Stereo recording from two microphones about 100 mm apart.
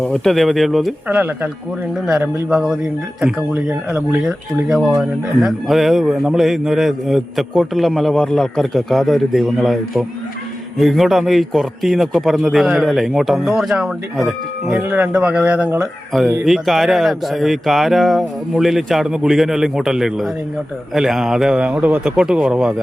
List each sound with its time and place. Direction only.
0.0 s speech: 5° left (ahead or behind)
1.0 s speech: 15° right (ahead or behind)
2.5 s speech: 5° right (ahead or behind)
14.8 s speech: 15° right (ahead or behind)